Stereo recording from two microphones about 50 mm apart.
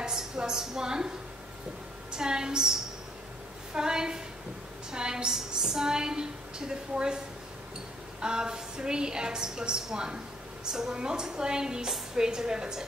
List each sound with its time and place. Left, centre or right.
0.0 s a sound: centre
2.1 s a woman's voice: centre
8.2 s a woman's voice: centre